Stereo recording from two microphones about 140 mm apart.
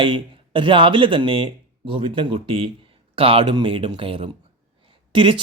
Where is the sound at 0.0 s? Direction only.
35° right (ahead or behind).